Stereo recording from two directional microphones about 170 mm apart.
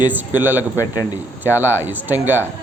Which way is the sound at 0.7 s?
20° left (ahead or behind).